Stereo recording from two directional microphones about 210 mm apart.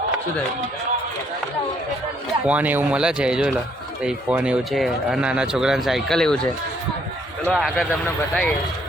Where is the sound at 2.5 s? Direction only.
5° right (ahead or behind).